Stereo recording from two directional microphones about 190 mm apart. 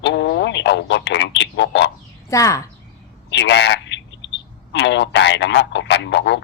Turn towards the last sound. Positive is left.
turn(degrees=70)  # may be behind; listen again after turning